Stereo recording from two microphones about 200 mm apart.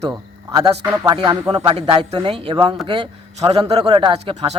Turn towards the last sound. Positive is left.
turn(degrees=-30)  # may be behind; listen again after turning